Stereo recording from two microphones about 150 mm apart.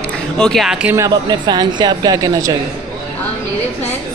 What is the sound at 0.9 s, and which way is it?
Speech, 25° right (ahead or behind).